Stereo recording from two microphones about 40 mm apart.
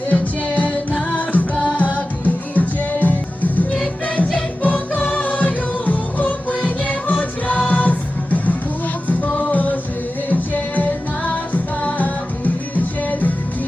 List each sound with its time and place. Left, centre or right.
0.1 s music: left